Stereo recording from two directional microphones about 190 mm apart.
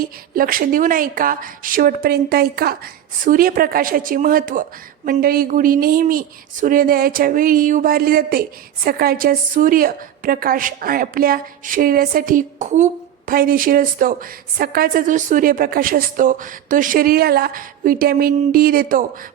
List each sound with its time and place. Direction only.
0.0 s speech: 50° right (ahead or behind)